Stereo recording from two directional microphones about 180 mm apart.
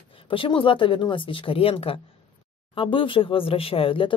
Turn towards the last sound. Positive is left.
turn(degrees=30)  # may be behind; listen again after turning